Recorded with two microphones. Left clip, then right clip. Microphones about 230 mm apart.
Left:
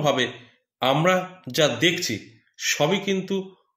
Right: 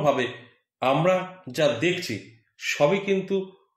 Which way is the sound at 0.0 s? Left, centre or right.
Left.